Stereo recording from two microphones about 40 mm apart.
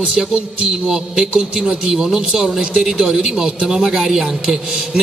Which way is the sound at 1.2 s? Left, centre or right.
Centre.